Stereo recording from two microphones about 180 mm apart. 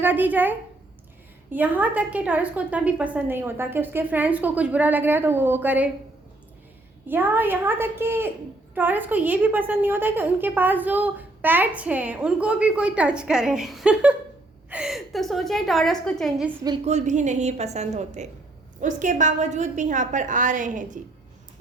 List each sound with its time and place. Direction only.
0.0 s a woman's voice: 10° right (ahead or behind)
7.1 s a woman's voice: 10° right (ahead or behind)
16.8 s a woman's voice: 40° right (ahead or behind)